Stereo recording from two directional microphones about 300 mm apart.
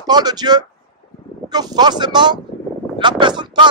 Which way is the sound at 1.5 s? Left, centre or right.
Centre.